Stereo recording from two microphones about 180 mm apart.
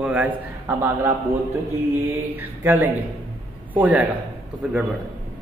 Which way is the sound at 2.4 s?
10° right (ahead or behind).